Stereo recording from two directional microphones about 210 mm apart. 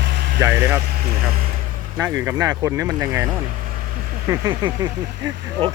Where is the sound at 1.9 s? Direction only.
10° right (ahead or behind).